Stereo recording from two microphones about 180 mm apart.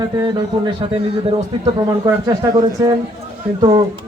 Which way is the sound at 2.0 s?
20° right (ahead or behind).